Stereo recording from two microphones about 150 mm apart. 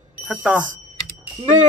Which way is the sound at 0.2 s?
10° right (ahead or behind).